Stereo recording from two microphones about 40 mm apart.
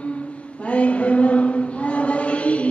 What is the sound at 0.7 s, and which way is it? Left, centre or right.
Chant, left.